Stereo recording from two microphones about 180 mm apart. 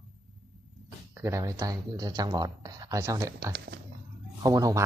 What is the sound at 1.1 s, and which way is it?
Speech, 15° right (ahead or behind).